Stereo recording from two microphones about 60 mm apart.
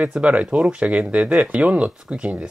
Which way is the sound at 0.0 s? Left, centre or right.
Right.